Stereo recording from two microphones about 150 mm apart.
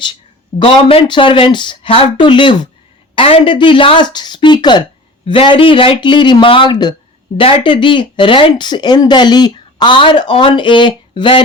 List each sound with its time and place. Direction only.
0.6 s speech: 40° left (ahead or behind)